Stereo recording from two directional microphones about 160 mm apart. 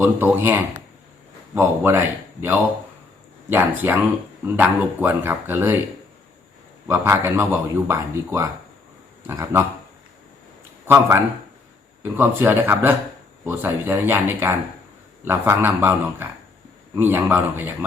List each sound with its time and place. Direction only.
0.0 s speech: 15° right (ahead or behind)
6.8 s speech: 15° right (ahead or behind)
10.8 s speech: 15° right (ahead or behind)